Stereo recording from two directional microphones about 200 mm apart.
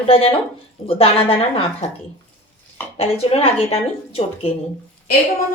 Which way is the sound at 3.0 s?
30° left (ahead or behind).